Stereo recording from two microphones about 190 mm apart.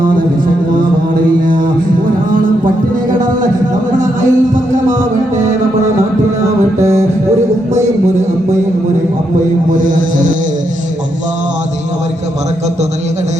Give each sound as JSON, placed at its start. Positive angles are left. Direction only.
{"t": 3.9, "sound": "music", "side_deg": -40}